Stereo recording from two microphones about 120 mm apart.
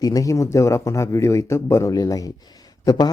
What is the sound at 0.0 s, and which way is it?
A man's voice, 30° left (ahead or behind).